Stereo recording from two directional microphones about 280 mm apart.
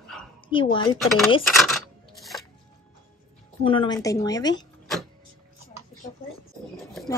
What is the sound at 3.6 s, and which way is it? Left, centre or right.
Speech, centre.